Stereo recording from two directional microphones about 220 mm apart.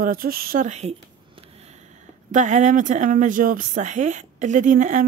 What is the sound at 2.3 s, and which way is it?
Speech, 35° right (ahead or behind).